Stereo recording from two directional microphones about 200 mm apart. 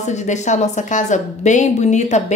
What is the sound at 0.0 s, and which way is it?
A woman's voice, 35° left (ahead or behind).